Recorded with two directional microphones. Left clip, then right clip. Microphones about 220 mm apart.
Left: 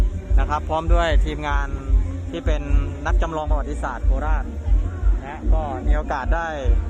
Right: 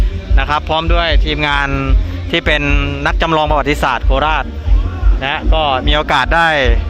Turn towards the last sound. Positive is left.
turn(degrees=-25)  # may be behind; listen again after turning